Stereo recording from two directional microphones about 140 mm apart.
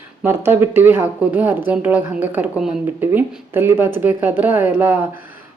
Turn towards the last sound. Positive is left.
turn(degrees=-15)  # may be behind; listen again after turning